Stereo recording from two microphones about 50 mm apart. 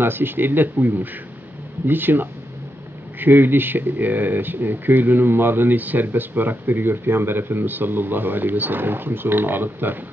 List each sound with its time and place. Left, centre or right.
0.0 s speech: right